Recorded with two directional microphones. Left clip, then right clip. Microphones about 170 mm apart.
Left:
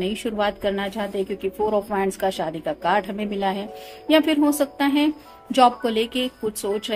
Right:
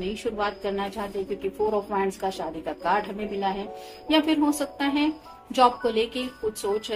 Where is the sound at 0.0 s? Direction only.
50° left (ahead or behind).